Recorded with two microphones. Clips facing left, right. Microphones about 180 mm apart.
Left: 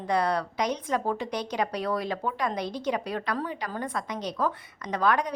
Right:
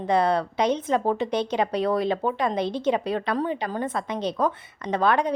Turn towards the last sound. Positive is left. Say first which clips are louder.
# right 4 dB
turn(degrees=-25)  # may be behind; listen again after turning